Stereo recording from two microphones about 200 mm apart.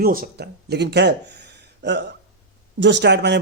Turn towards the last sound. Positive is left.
turn(degrees=-60)  # may be behind; listen again after turning